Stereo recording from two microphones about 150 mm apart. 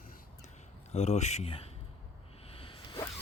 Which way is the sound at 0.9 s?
45° left (ahead or behind).